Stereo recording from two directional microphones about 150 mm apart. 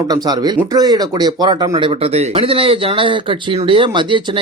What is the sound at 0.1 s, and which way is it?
Speech, 25° right (ahead or behind).